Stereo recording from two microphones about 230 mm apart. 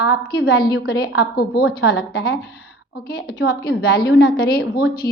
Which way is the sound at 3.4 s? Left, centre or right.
Left.